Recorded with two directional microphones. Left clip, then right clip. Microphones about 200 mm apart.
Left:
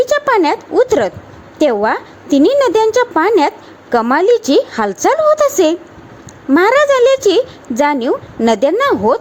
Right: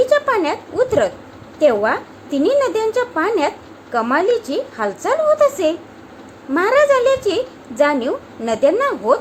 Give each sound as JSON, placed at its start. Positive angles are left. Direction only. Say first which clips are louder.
{"t": 0.1, "sound": "a woman's voice", "louder": "left 4 dB", "side_deg": 40}